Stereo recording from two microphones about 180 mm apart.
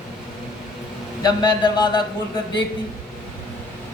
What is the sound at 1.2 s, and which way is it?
Speech, 25° left (ahead or behind).